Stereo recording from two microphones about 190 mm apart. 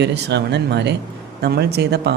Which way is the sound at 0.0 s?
65° right (ahead or behind).